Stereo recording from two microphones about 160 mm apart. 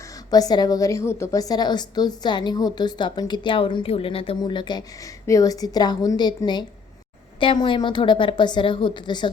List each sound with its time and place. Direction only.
0.3 s a woman's voice: 25° left (ahead or behind)